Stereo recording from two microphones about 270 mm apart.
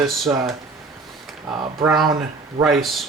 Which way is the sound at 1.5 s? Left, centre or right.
Centre.